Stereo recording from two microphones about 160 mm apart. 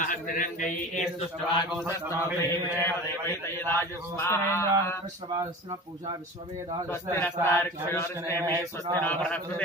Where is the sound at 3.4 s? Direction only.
15° left (ahead or behind).